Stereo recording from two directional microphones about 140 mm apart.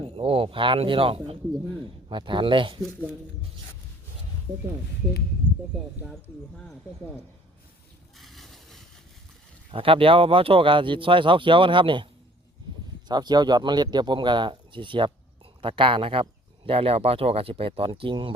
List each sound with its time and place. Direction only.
0.2 s speech: 40° right (ahead or behind)
8.2 s a sound: centre (ahead or behind)
9.7 s speech: 40° right (ahead or behind)
13.1 s speech: 30° right (ahead or behind)